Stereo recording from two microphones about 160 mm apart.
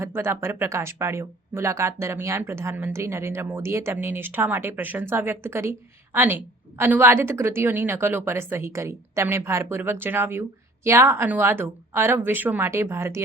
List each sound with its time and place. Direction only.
0.0 s speech: 15° right (ahead or behind)